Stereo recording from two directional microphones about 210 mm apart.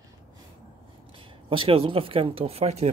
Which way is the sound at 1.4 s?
25° right (ahead or behind).